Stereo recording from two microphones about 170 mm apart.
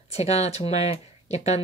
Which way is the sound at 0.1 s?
40° left (ahead or behind).